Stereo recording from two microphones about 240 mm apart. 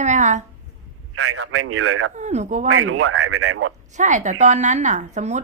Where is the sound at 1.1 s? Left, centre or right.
Right.